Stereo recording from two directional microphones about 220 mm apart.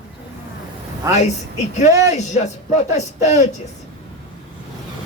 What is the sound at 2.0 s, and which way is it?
Speech, 30° left (ahead or behind).